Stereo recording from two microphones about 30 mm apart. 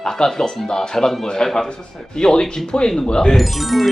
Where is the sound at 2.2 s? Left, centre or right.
Left.